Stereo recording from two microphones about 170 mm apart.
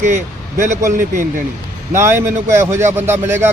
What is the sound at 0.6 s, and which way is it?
Speech, 45° right (ahead or behind).